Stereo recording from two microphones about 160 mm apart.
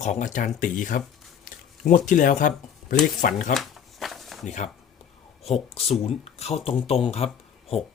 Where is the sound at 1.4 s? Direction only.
55° left (ahead or behind).